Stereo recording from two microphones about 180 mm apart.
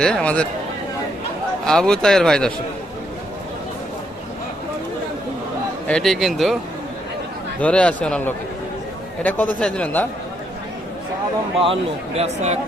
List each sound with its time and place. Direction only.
0.0 s speech: 5° left (ahead or behind)
1.6 s speech: 5° left (ahead or behind)
5.9 s speech: centre (ahead or behind)
7.6 s a man's voice: 5° left (ahead or behind)
11.6 s speech: 35° right (ahead or behind)